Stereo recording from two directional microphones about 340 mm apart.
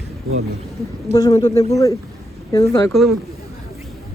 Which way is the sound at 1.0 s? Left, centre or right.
Centre.